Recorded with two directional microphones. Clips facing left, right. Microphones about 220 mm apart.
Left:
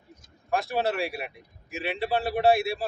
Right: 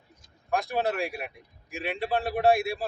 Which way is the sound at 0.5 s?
Centre (ahead or behind).